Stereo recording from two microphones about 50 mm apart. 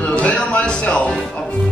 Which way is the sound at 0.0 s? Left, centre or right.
Left.